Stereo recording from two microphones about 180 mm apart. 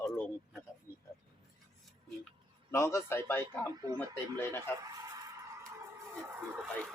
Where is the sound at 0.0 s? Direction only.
Centre (ahead or behind).